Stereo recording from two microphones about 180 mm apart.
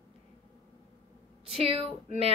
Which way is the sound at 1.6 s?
30° right (ahead or behind).